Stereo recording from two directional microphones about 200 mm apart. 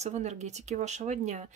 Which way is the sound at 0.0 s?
35° right (ahead or behind).